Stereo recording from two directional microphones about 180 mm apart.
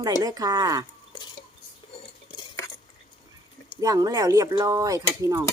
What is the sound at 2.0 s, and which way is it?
Cutlery, 25° left (ahead or behind).